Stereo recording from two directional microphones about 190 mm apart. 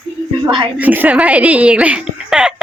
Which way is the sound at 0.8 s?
10° right (ahead or behind).